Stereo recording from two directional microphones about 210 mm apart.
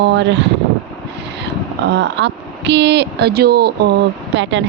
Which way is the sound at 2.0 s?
55° right (ahead or behind).